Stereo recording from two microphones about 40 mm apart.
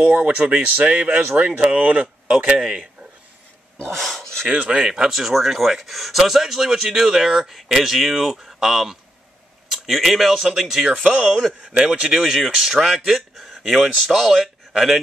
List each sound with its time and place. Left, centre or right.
0.0 s speech: right
1.3 s speech: right
1.6 s speech: right
3.9 s speech: centre
4.5 s speech: right
4.8 s speech: centre
11.1 s speech: right; by 12.7 s centre
13.0 s a sound: centre
14.1 s speech: centre